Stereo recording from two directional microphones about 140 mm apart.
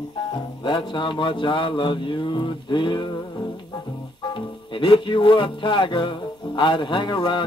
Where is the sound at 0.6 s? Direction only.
35° left (ahead or behind).